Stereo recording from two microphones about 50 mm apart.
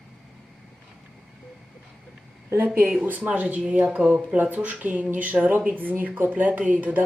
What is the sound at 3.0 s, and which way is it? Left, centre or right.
Speech, right.